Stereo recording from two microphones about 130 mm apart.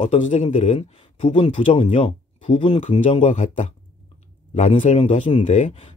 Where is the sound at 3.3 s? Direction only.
60° left (ahead or behind).